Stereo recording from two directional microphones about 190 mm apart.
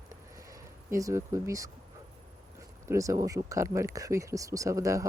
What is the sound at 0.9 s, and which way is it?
Speech, 15° right (ahead or behind).